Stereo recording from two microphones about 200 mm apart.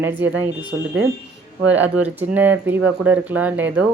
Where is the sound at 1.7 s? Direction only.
10° right (ahead or behind).